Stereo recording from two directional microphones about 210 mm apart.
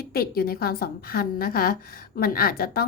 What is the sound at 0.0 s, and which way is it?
A woman's voice, 45° left (ahead or behind).